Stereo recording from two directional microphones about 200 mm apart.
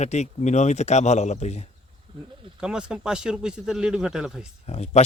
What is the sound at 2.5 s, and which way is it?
Speech, 5° right (ahead or behind).